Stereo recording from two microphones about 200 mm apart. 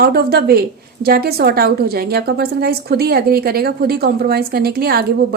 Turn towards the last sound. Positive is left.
turn(degrees=-50)  # may be behind; listen again after turning